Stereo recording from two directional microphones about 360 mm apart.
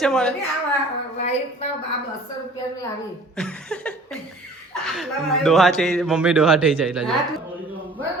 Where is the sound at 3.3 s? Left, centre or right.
Centre.